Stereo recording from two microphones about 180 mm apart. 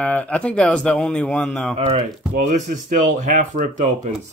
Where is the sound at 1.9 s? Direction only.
45° right (ahead or behind).